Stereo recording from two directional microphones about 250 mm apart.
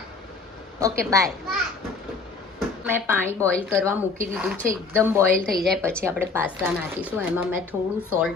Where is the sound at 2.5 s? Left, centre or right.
Centre.